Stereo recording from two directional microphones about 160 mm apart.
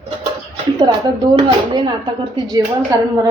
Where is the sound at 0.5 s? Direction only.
35° right (ahead or behind).